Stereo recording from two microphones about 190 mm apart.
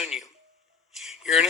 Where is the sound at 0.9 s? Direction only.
Centre (ahead or behind).